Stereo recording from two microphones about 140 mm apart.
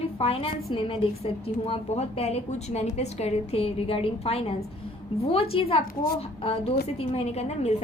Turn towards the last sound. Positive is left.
turn(degrees=50)  # may be behind; listen again after turning